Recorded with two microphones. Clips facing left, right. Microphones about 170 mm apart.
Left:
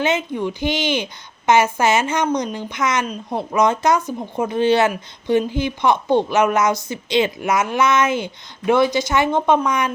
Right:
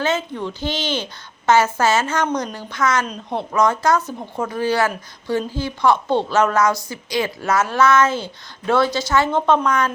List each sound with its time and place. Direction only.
0.0 s a woman's voice: 15° left (ahead or behind)